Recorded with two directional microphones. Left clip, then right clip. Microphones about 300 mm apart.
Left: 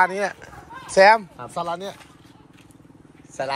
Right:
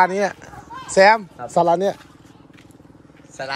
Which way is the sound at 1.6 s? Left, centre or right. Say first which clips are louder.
Right 11 dB; right.